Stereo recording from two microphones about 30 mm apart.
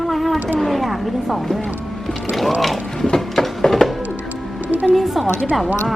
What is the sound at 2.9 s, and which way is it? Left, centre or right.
Mechanisms, centre.